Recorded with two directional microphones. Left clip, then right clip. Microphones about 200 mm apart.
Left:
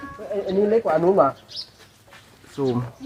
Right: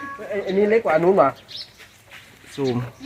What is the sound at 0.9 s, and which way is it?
Speech, 15° right (ahead or behind).